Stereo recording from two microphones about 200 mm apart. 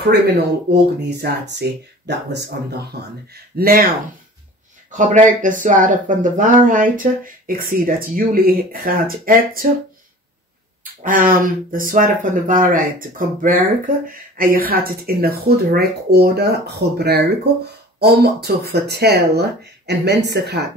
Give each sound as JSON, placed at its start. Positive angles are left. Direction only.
{"t": 0.7, "sound": "speech", "side_deg": -55}
{"t": 3.5, "sound": "speech", "side_deg": -50}
{"t": 4.9, "sound": "speech", "side_deg": -40}
{"t": 10.8, "sound": "speech", "side_deg": -40}